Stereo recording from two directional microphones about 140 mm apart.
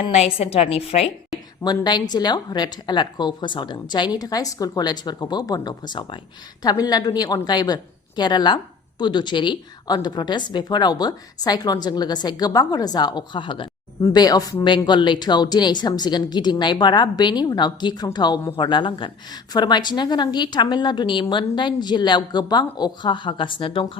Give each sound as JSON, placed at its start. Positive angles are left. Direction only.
{"t": 0.0, "sound": "a woman's voice", "side_deg": 45}
{"t": 1.6, "sound": "a woman's voice", "side_deg": 30}